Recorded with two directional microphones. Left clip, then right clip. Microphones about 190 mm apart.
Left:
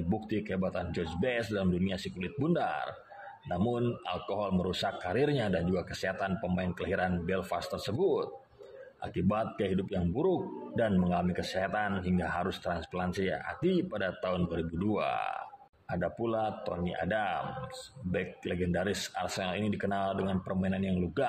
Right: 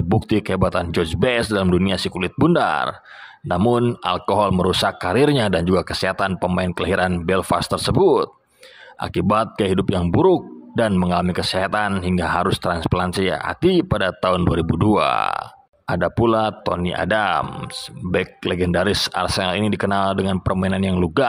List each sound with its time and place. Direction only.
0.1 s speech: 40° right (ahead or behind)